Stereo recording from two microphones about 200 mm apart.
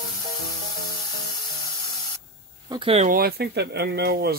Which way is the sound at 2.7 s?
25° right (ahead or behind).